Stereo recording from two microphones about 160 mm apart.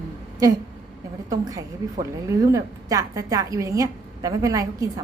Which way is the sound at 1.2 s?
20° right (ahead or behind).